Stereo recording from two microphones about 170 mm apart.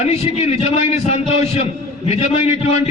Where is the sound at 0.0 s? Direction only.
40° left (ahead or behind).